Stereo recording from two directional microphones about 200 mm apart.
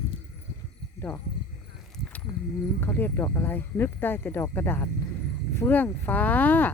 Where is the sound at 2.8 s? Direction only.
10° left (ahead or behind).